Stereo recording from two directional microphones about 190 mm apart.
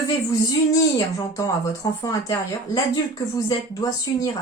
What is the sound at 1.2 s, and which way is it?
Speech, 15° left (ahead or behind).